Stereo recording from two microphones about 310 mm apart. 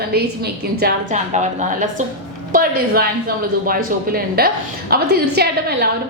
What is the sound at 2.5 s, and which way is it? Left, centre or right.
Speech, right.